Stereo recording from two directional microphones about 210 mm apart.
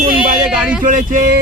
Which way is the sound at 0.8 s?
40° right (ahead or behind).